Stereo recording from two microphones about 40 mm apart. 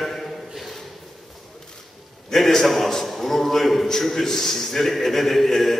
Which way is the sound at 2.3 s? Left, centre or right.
Centre.